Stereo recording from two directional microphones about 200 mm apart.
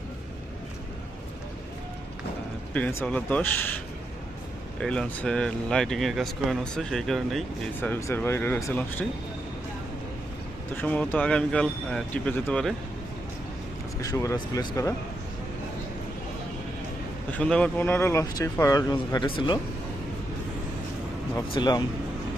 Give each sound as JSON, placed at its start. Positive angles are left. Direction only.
{"t": 2.7, "sound": "speech", "side_deg": 10}
{"t": 4.8, "sound": "speech", "side_deg": 5}
{"t": 10.8, "sound": "speech", "side_deg": 5}
{"t": 14.0, "sound": "speech", "side_deg": 15}
{"t": 17.3, "sound": "speech", "side_deg": 5}
{"t": 21.3, "sound": "speech", "side_deg": 20}